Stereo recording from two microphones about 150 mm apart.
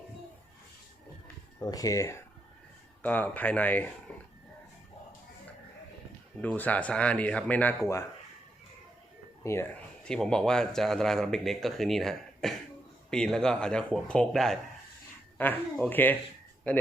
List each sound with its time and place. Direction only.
1.6 s speech: 25° left (ahead or behind)
3.0 s speech: 10° left (ahead or behind)
4.1 s a sound: 10° left (ahead or behind)
6.4 s speech: 10° left (ahead or behind)
9.4 s speech: 20° left (ahead or behind)
10.0 s speech: 5° left (ahead or behind)